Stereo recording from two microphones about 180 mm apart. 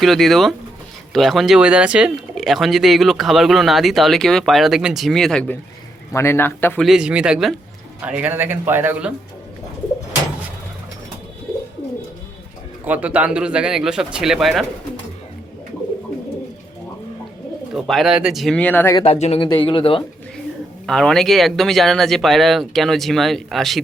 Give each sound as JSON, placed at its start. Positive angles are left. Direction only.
{"t": 0.0, "sound": "speech", "side_deg": 0}
{"t": 6.8, "sound": "a man's voice", "side_deg": -5}
{"t": 12.8, "sound": "speech", "side_deg": -10}
{"t": 17.7, "sound": "speech", "side_deg": 0}
{"t": 18.9, "sound": "speech", "side_deg": 35}
{"t": 20.8, "sound": "speech", "side_deg": 5}